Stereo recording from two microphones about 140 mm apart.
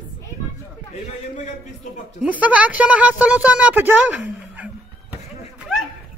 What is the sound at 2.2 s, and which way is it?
A woman's voice, 10° right (ahead or behind).